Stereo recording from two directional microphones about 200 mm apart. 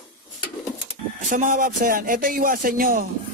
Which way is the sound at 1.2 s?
40° right (ahead or behind).